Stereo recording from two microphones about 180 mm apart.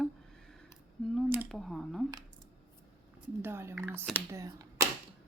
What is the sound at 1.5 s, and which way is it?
Speech, centre (ahead or behind).